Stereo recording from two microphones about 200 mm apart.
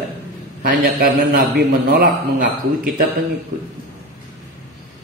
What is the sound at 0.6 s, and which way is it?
A man's voice, 45° right (ahead or behind).